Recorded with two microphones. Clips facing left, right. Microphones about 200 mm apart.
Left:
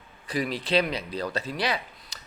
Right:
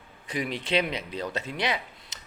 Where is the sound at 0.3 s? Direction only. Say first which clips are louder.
Left 2 dB; 20° right (ahead or behind).